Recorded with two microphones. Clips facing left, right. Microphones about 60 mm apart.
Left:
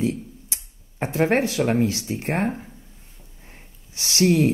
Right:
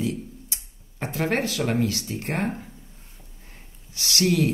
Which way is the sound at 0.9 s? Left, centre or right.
Left.